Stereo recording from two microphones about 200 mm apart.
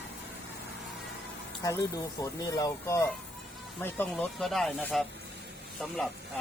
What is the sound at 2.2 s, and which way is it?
Speech, 15° left (ahead or behind).